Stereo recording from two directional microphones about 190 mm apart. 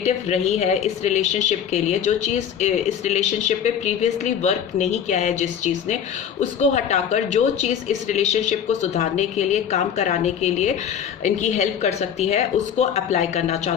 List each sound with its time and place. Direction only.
0.0 s a woman's voice: 35° left (ahead or behind)